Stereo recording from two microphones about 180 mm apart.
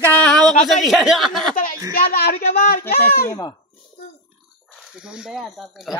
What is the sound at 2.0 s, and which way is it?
Speech, 60° left (ahead or behind).